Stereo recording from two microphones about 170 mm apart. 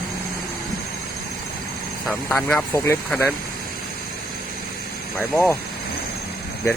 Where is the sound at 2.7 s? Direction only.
15° left (ahead or behind).